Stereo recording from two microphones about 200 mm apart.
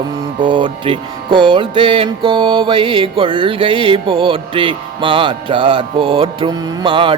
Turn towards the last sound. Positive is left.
turn(degrees=-25)  # may be behind; listen again after turning